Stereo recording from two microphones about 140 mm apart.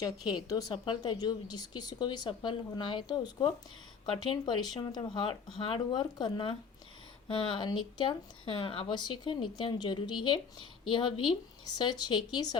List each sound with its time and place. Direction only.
0.3 s a woman's voice: 30° left (ahead or behind)